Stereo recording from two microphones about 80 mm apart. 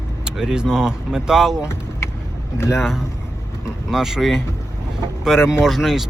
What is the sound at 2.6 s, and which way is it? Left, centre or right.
Speech, left.